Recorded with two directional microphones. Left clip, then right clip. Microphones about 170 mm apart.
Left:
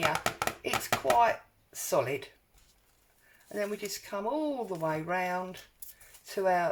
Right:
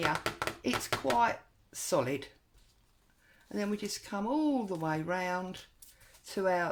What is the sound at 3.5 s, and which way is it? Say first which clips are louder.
Speech: left 2 dB; 40° right (ahead or behind).